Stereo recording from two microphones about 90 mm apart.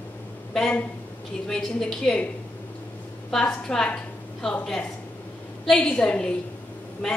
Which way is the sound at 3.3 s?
5° left (ahead or behind).